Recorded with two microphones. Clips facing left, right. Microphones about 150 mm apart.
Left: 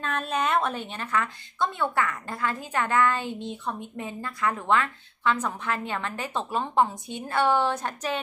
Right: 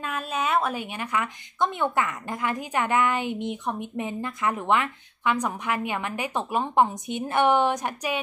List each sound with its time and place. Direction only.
0.0 s a woman's voice: 5° right (ahead or behind)